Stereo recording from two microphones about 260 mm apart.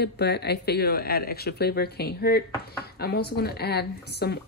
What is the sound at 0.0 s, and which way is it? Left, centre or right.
Speech, left.